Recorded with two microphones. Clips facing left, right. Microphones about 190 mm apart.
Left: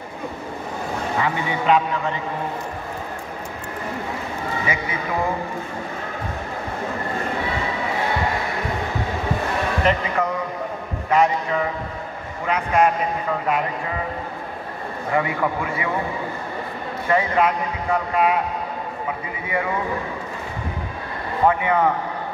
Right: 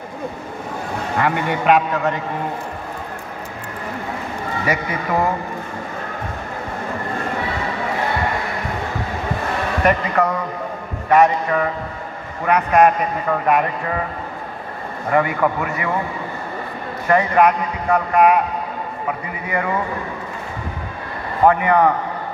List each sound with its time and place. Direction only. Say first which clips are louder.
1.1 s a man's voice: right 5 dB; 60° right (ahead or behind)
9.8 s a man's voice: right 5 dB; 65° right (ahead or behind)
15.0 s a man's voice: right 4 dB; 60° right (ahead or behind)
17.1 s a man's voice: right 4 dB; 65° right (ahead or behind)
21.5 s a man's voice: right 4 dB; 65° right (ahead or behind)